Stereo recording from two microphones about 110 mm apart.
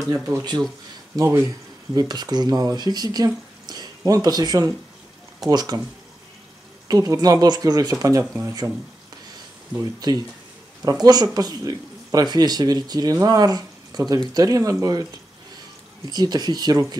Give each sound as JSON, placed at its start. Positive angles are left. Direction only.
{"t": 0.1, "sound": "speech", "side_deg": -35}
{"t": 1.1, "sound": "speech", "side_deg": -25}
{"t": 2.0, "sound": "speech", "side_deg": -40}
{"t": 6.9, "sound": "speech", "side_deg": -35}
{"t": 9.8, "sound": "speech", "side_deg": -35}
{"t": 16.1, "sound": "speech", "side_deg": -40}